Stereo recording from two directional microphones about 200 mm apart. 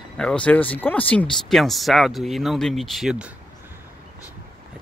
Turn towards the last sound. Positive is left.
turn(degrees=-5)  # may be behind; listen again after turning